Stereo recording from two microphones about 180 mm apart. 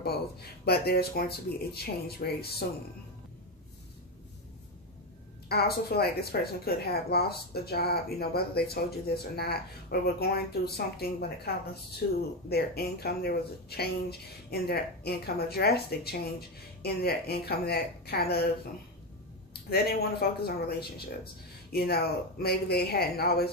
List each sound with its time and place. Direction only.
0.0 s speech: 60° left (ahead or behind)
5.5 s speech: 60° left (ahead or behind)
19.5 s speech: 60° left (ahead or behind)